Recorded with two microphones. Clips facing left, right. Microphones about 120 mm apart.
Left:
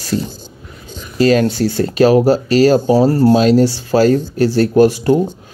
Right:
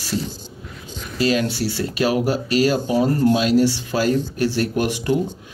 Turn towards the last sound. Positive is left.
turn(degrees=40)  # may be behind; listen again after turning